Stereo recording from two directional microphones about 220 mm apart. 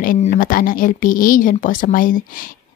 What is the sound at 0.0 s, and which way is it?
Speech, 35° left (ahead or behind).